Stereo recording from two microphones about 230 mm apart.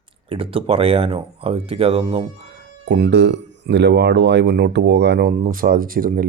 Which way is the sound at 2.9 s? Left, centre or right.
Right.